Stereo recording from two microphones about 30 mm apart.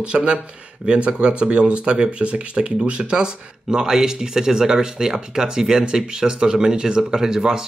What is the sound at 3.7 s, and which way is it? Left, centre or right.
Speech, centre.